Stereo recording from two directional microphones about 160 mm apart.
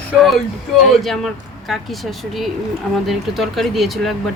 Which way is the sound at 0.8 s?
Centre (ahead or behind).